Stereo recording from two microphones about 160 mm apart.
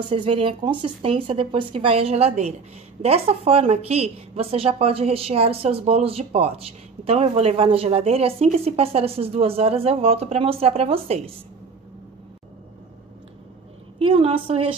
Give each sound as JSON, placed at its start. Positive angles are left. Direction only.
{"t": 0.1, "sound": "a woman's voice", "side_deg": -35}
{"t": 13.9, "sound": "a woman's voice", "side_deg": -35}